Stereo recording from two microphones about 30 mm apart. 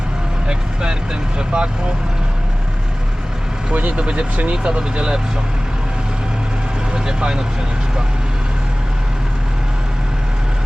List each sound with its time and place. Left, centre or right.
0.4 s vehicle: right
1.4 s speech: right
3.7 s speech: right
3.9 s speech: right
6.9 s speech: right